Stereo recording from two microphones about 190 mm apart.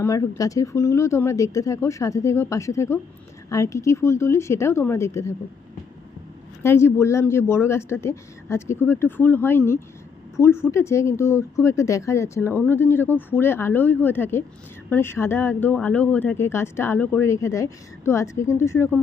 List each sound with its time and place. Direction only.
0.0 s speech: 15° left (ahead or behind)
6.6 s speech: 15° left (ahead or behind)